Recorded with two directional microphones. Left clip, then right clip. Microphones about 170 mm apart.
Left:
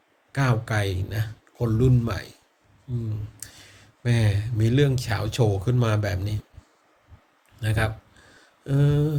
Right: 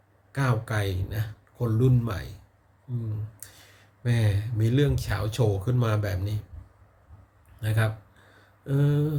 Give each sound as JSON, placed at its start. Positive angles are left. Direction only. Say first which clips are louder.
{"t": 0.3, "sound": "speech", "louder": "left 3 dB", "side_deg": -20}
{"t": 3.4, "sound": "speech", "louder": "left 5 dB", "side_deg": -15}
{"t": 7.6, "sound": "speech", "louder": "left 3 dB", "side_deg": -15}